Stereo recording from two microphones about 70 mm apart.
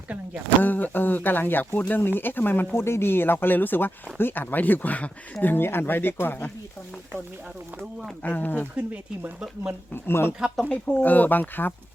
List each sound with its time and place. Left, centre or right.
0.6 s speech: left
8.2 s speech: left
8.7 s speech: right
9.9 s speech: left
10.7 s speech: left